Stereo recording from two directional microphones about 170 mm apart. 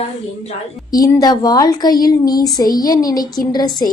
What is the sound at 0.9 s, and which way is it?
Speech, 20° left (ahead or behind).